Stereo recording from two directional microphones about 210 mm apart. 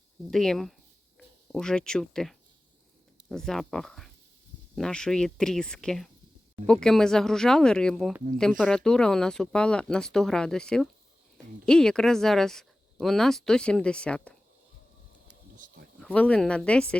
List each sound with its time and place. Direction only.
0.3 s speech: centre (ahead or behind)
15.5 s a sound: 40° right (ahead or behind)
16.0 s speech: 5° left (ahead or behind)